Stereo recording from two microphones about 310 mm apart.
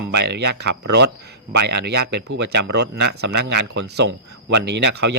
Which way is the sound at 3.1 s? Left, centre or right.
Right.